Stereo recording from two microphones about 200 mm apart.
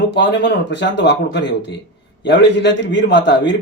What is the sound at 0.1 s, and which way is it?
A man's voice, 60° left (ahead or behind).